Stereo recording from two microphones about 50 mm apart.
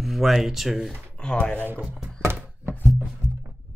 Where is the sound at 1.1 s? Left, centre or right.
Centre.